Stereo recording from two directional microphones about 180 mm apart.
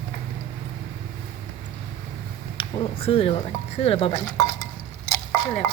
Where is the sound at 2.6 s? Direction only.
30° left (ahead or behind).